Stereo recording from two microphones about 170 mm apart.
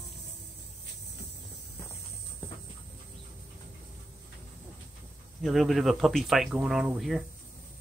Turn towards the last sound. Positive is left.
turn(degrees=0)  # may be behind; listen again after turning